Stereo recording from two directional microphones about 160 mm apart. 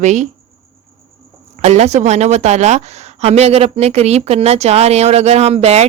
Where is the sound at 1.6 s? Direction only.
45° right (ahead or behind).